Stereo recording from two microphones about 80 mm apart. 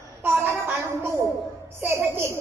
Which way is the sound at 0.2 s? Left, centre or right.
Right.